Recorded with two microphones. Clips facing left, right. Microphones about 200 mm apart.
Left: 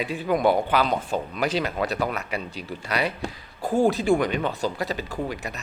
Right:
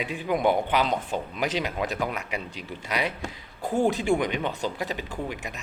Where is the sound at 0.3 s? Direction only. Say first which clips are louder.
Left 2 dB; 15° right (ahead or behind).